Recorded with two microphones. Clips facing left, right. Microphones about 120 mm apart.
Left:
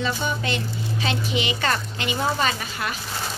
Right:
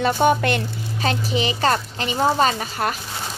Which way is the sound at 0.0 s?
60° right (ahead or behind).